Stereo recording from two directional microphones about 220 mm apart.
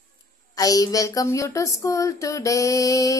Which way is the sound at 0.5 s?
15° left (ahead or behind).